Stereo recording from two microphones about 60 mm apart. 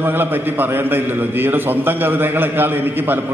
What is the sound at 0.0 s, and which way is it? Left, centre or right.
A man's voice, right.